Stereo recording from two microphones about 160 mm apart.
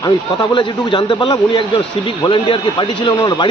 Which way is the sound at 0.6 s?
30° left (ahead or behind).